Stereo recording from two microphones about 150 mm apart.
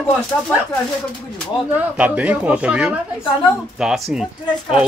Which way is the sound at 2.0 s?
10° right (ahead or behind).